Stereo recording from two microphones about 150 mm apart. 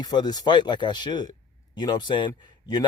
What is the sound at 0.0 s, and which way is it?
A man's voice, 30° left (ahead or behind).